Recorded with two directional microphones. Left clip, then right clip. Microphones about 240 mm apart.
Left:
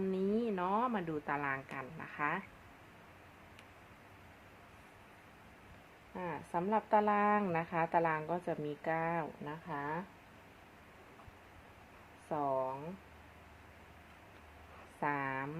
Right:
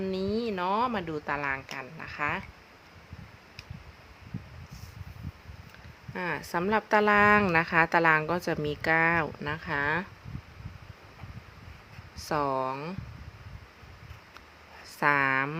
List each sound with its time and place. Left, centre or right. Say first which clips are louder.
0.1 s speech: right 5 dB; centre
6.1 s a woman's voice: right 8 dB; right
12.3 s speech: right 7 dB; right
15.0 s a woman's voice: right 12 dB; right